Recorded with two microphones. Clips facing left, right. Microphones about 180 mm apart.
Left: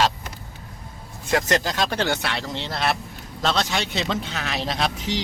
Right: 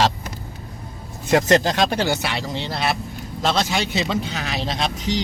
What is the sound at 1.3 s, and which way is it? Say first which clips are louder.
Speech: right 5 dB; 25° right (ahead or behind).